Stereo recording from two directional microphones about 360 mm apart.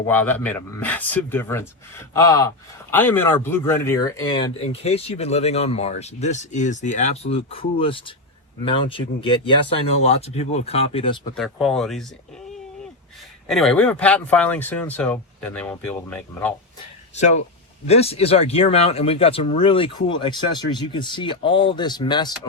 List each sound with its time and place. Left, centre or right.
0.1 s speech: centre
11.3 s speech: centre
13.5 s speech: centre
17.2 s speech: centre